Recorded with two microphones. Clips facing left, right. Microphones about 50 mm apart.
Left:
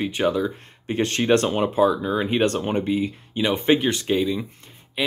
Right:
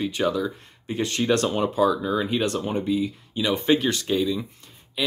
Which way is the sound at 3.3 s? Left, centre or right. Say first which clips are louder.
Left 2 dB; left.